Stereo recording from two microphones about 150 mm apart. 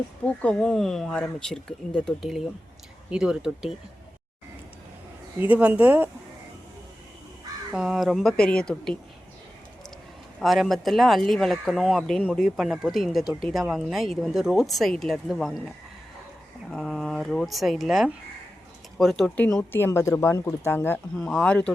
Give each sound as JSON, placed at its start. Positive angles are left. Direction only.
{"t": 0.4, "sound": "speech", "side_deg": 5}
{"t": 5.4, "sound": "speech", "side_deg": -10}
{"t": 7.7, "sound": "speech", "side_deg": -5}
{"t": 10.4, "sound": "speech", "side_deg": 0}
{"t": 16.6, "sound": "speech", "side_deg": 0}
{"t": 19.5, "sound": "speech", "side_deg": 15}